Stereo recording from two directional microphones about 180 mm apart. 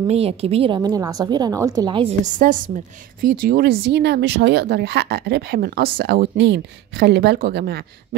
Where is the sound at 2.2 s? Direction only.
45° right (ahead or behind).